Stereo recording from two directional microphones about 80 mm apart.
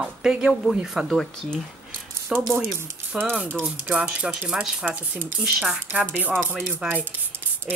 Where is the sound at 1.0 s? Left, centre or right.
Centre.